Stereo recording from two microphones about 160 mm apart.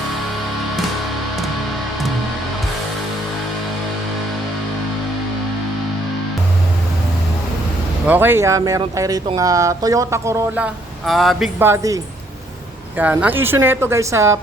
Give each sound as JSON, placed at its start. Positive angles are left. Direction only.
{"t": 8.0, "sound": "a woman's voice", "side_deg": -10}
{"t": 11.0, "sound": "speech", "side_deg": 0}
{"t": 11.6, "sound": "speech", "side_deg": -20}
{"t": 13.0, "sound": "a woman's voice", "side_deg": -10}